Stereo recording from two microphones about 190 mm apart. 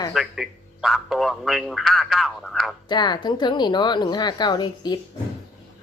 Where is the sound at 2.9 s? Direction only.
25° left (ahead or behind).